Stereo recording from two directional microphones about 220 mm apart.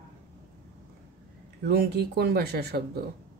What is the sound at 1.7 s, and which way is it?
Speech, 45° right (ahead or behind).